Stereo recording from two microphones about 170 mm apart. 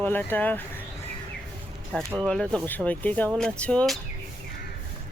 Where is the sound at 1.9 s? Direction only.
5° left (ahead or behind).